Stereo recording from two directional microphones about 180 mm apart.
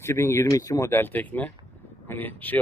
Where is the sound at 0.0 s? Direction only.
15° left (ahead or behind).